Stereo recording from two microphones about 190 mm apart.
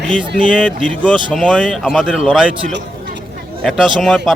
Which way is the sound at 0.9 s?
5° left (ahead or behind).